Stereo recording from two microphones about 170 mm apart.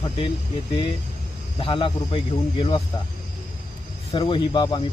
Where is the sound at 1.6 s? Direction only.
30° left (ahead or behind).